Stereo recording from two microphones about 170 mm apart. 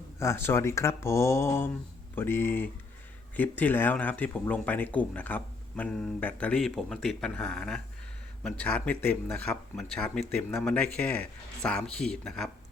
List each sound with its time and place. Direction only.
0.2 s speech: 15° left (ahead or behind)